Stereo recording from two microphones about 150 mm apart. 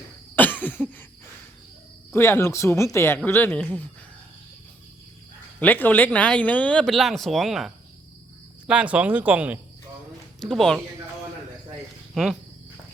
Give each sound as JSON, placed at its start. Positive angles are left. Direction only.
{"t": 0.3, "sound": "cough", "side_deg": 10}
{"t": 2.1, "sound": "speech", "side_deg": 15}
{"t": 5.5, "sound": "speech", "side_deg": 10}
{"t": 10.4, "sound": "speech", "side_deg": 0}
{"t": 12.1, "sound": "speech", "side_deg": 0}